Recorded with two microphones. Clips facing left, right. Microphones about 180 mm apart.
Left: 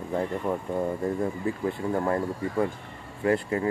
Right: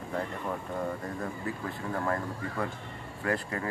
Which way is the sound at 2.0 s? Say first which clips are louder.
Left 5 dB; 20° left (ahead or behind).